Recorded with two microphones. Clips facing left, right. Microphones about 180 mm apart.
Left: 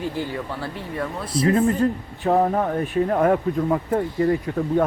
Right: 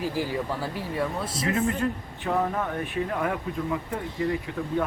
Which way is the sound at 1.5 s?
35° left (ahead or behind).